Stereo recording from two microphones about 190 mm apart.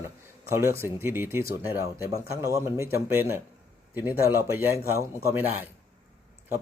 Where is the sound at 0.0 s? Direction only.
15° right (ahead or behind).